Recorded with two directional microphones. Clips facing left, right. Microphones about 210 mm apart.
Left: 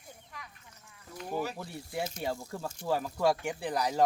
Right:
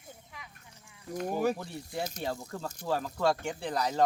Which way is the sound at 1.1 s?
50° right (ahead or behind).